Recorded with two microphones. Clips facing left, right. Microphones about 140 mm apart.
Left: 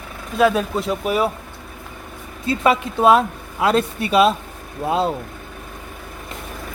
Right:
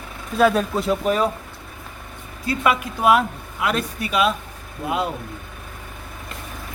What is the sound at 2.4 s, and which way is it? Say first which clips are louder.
A woman's voice: left 3 dB; 30° left (ahead or behind).